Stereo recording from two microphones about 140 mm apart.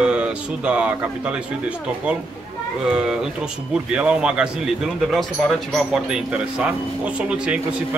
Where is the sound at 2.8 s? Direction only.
5° right (ahead or behind).